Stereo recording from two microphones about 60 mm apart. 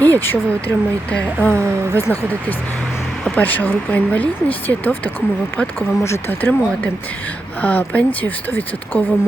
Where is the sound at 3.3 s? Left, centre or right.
Left.